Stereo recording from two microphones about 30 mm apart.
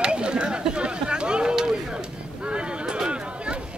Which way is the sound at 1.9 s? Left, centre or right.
Right.